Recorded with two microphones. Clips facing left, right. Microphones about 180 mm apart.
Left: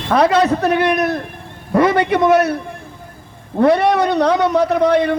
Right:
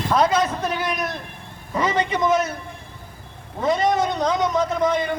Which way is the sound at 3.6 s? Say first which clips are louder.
Left 7 dB; 65° left (ahead or behind).